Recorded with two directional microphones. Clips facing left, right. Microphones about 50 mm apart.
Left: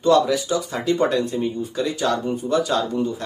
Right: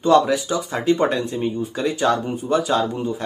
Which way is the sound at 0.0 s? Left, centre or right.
Right.